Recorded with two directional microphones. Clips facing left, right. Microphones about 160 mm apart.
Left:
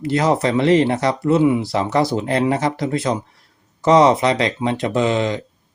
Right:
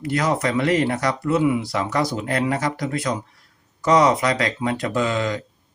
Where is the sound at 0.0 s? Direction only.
25° left (ahead or behind).